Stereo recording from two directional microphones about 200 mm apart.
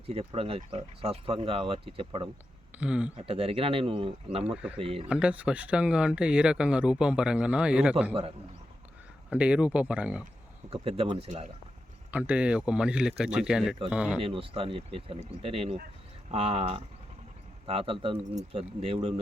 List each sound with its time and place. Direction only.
0.1 s speech: 30° right (ahead or behind)
2.7 s speech: 5° right (ahead or behind)
3.2 s speech: 30° right (ahead or behind)
5.0 s speech: 5° right (ahead or behind)
9.3 s speech: 5° right (ahead or behind)
10.7 s speech: 30° right (ahead or behind)
12.1 s speech: 5° right (ahead or behind)
14.2 s speech: 30° right (ahead or behind)